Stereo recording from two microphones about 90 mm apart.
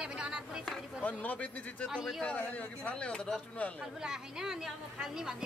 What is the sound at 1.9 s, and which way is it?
Speech, 5° right (ahead or behind).